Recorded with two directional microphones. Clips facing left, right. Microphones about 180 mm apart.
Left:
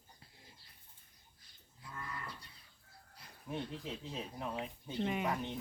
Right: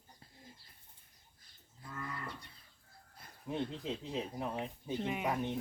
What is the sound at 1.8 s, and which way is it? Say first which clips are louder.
Moo: right 2 dB; 50° right (ahead or behind).